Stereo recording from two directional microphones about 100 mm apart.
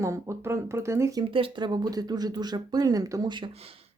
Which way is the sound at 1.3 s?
55° right (ahead or behind).